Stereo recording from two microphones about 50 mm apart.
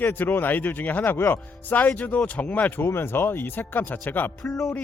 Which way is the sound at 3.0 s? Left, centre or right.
Left.